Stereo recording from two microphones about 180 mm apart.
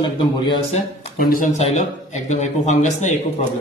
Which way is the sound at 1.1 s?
50° left (ahead or behind).